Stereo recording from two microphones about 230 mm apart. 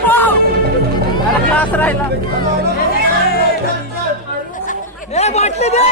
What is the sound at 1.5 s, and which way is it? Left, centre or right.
Speech, centre.